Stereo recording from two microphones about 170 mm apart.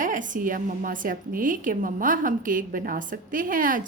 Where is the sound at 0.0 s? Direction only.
50° right (ahead or behind).